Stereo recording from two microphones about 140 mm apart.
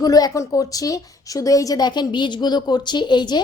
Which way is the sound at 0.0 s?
25° left (ahead or behind).